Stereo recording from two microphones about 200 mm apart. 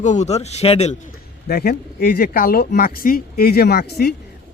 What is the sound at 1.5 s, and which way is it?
Speech, 50° left (ahead or behind).